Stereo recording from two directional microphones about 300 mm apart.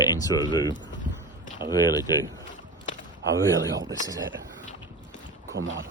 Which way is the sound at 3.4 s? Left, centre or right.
Centre.